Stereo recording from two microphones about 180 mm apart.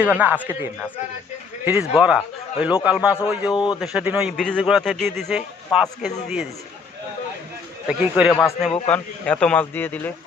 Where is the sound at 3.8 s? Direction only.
5° right (ahead or behind).